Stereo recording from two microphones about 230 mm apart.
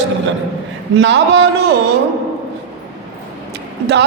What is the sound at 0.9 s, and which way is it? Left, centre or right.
Speech, right.